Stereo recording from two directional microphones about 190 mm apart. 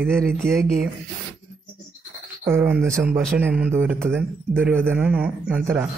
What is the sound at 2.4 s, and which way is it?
Speech, 10° right (ahead or behind).